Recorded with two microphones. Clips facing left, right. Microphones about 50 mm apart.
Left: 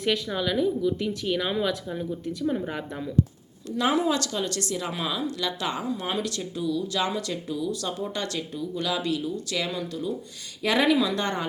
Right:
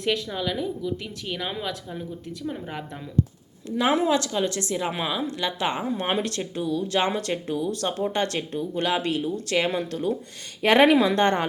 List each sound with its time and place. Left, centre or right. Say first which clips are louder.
0.0 s speech: even; centre
3.8 s a woman's voice: right 2 dB; right